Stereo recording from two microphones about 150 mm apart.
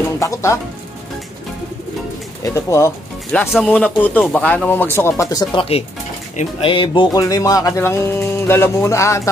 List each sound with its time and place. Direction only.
0.2 s music: 20° left (ahead or behind)
2.4 s music: 20° left (ahead or behind)
3.3 s speech: 5° left (ahead or behind); by 5.9 s 40° left (ahead or behind)
6.6 s music: 35° left (ahead or behind); by 9.3 s 20° left (ahead or behind)